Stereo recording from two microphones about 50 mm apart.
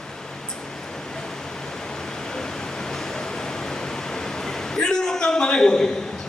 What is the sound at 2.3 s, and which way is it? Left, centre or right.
Pink noise, centre.